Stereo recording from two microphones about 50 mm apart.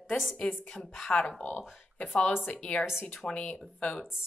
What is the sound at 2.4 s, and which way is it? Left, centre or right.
Speech, left.